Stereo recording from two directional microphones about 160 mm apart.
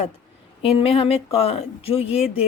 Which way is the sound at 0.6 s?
40° left (ahead or behind).